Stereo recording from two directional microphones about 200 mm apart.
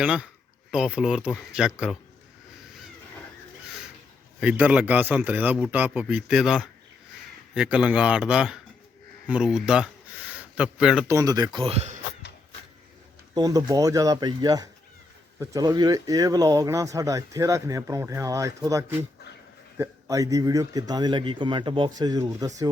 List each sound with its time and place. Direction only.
0.0 s speech: 5° right (ahead or behind)
4.4 s speech: 5° right (ahead or behind)
11.1 s a man's voice: 15° right (ahead or behind)
13.3 s a man's voice: 20° right (ahead or behind)